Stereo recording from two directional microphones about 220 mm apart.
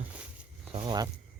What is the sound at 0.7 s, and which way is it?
Speech, 20° right (ahead or behind).